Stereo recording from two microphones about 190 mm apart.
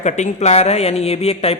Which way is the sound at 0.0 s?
35° left (ahead or behind).